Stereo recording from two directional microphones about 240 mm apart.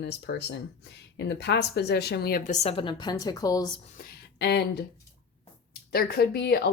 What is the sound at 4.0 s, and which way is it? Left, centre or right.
A woman's voice, left.